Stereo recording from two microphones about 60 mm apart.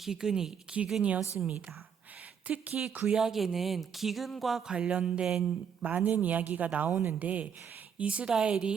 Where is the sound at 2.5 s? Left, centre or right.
Right.